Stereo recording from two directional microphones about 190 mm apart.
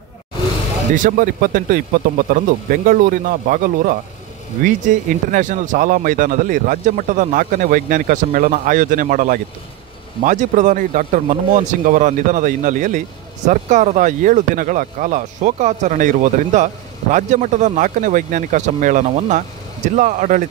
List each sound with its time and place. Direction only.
0.9 s speech: 45° right (ahead or behind)